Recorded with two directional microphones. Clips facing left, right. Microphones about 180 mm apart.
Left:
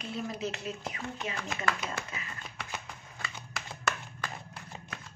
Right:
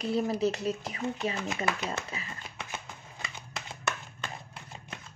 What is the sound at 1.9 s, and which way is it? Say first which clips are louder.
Speech: right 2 dB; 25° right (ahead or behind).